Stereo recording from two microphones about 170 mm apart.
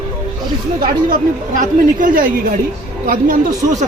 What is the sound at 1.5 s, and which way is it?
Speech, 55° right (ahead or behind).